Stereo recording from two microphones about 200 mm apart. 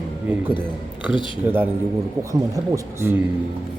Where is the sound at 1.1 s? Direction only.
25° left (ahead or behind).